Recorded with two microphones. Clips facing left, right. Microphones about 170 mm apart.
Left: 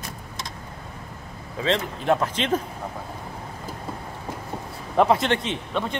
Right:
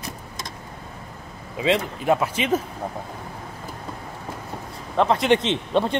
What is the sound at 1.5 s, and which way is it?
Speech, 10° right (ahead or behind).